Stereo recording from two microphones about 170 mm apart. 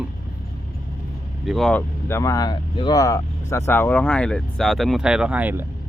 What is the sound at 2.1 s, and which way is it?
Speech, 15° left (ahead or behind).